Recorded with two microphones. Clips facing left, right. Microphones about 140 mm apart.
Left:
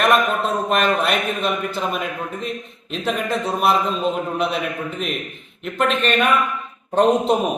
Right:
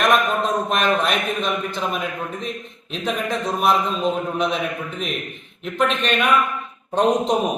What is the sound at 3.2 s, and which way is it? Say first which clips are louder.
A man's voice: even; 5° left (ahead or behind).